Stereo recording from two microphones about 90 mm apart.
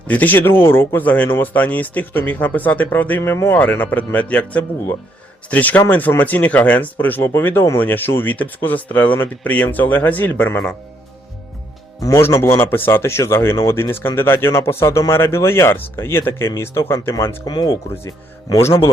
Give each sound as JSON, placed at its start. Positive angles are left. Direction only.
{"t": 0.1, "sound": "speech", "side_deg": 20}
{"t": 3.2, "sound": "speech", "side_deg": 30}
{"t": 11.9, "sound": "speech", "side_deg": 40}
{"t": 17.4, "sound": "speech", "side_deg": 50}